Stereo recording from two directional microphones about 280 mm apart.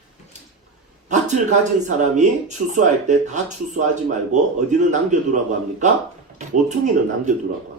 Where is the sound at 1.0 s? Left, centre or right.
Right.